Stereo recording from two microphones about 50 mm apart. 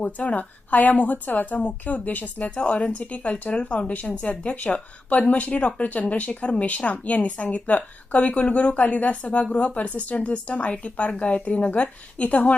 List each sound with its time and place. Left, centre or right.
0.0 s a woman's voice: left
4.3 s a woman's voice: left